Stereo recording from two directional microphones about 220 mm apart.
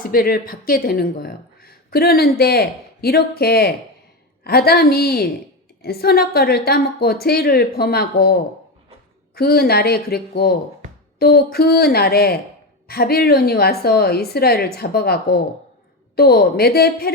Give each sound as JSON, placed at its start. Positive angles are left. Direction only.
{"t": 0.0, "sound": "a woman's voice", "side_deg": 40}